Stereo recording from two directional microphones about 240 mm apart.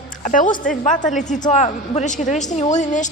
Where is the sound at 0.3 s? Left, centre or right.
Left.